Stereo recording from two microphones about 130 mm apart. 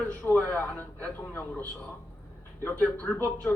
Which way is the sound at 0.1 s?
10° left (ahead or behind).